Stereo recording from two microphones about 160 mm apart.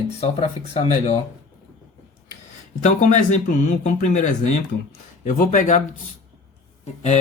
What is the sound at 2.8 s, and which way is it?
Speech, 50° left (ahead or behind).